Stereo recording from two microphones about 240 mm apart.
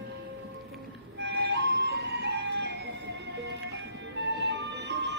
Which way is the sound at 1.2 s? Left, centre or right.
Right.